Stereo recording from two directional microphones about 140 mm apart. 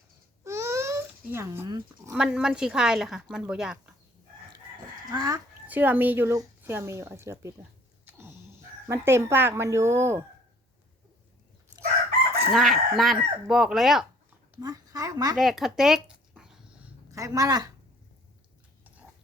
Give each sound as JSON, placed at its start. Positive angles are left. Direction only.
{"t": 0.4, "sound": "baby cry", "side_deg": -20}
{"t": 2.1, "sound": "speech", "side_deg": -5}
{"t": 5.1, "sound": "a child's voice", "side_deg": -25}
{"t": 5.6, "sound": "speech", "side_deg": -10}
{"t": 8.0, "sound": "a sound", "side_deg": -15}
{"t": 8.9, "sound": "speech", "side_deg": -20}
{"t": 12.5, "sound": "speech", "side_deg": 0}
{"t": 14.6, "sound": "speech", "side_deg": -25}
{"t": 15.4, "sound": "speech", "side_deg": 0}
{"t": 17.1, "sound": "speech", "side_deg": -25}